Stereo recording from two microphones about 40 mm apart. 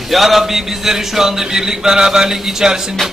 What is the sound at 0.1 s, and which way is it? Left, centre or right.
A man's voice, centre.